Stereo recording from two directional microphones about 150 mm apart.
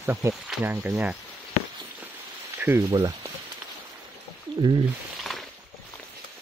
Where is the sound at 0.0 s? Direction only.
20° right (ahead or behind).